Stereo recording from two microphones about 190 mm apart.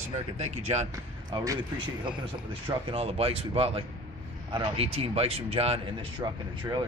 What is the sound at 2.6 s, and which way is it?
Speech, 30° right (ahead or behind).